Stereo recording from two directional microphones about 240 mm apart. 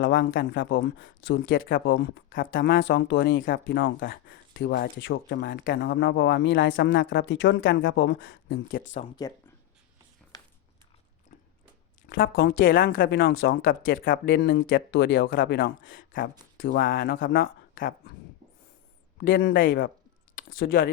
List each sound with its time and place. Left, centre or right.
0.0 s speech: left
2.7 s speech: left
8.7 s speech: left
10.3 s a sound: centre
12.0 s speech: left
13.0 s speech: left
13.9 s speech: left
14.3 s speech: left
16.6 s speech: left
17.7 s speech: left
19.4 s speech: left